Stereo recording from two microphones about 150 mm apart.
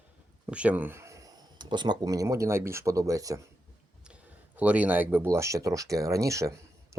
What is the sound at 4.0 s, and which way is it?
Speech, 5° right (ahead or behind).